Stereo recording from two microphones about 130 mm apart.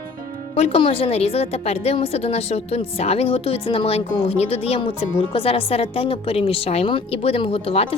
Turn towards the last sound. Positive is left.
turn(degrees=45)  # may be behind; listen again after turning